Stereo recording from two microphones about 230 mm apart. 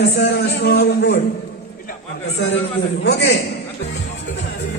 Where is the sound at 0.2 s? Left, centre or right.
Left.